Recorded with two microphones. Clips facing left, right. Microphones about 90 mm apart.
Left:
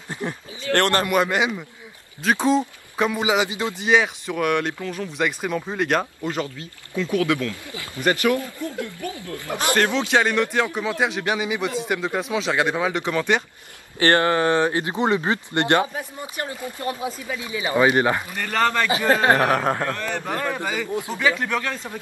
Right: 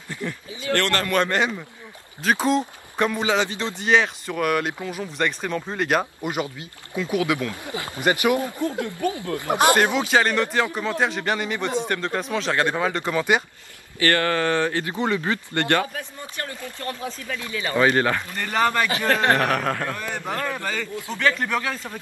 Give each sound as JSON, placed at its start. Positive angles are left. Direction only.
{"t": 0.1, "sound": "a man's voice", "side_deg": 25}
{"t": 4.7, "sound": "speech", "side_deg": -15}
{"t": 5.0, "sound": "a man's voice", "side_deg": 5}
{"t": 6.2, "sound": "speech", "side_deg": -15}
{"t": 10.0, "sound": "a man's voice", "side_deg": 0}
{"t": 13.9, "sound": "speech", "side_deg": 25}
{"t": 18.3, "sound": "a man's voice", "side_deg": -5}
{"t": 18.9, "sound": "speech", "side_deg": 10}
{"t": 19.9, "sound": "speech", "side_deg": -10}
{"t": 20.2, "sound": "speech", "side_deg": 10}